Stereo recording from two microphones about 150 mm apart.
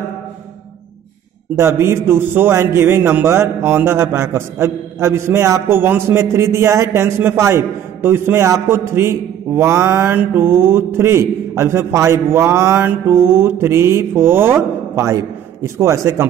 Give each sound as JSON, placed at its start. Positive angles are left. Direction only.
{"t": 1.6, "sound": "a man's voice", "side_deg": -15}